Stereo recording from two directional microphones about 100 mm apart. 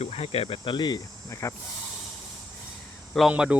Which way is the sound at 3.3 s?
15° right (ahead or behind).